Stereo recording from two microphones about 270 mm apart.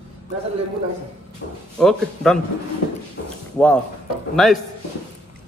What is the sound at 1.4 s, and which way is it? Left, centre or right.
Speech, left.